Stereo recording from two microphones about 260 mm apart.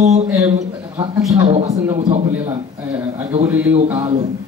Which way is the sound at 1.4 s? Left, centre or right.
Centre.